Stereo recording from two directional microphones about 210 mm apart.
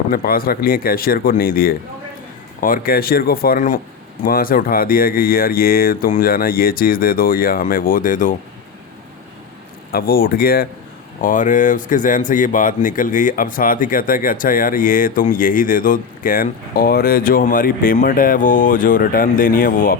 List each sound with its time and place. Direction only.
0.1 s speech: 45° left (ahead or behind)
9.9 s speech: 45° left (ahead or behind)